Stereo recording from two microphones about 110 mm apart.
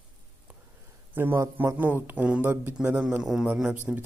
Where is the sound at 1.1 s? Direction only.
20° right (ahead or behind).